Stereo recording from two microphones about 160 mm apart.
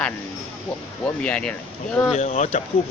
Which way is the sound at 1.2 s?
10° left (ahead or behind).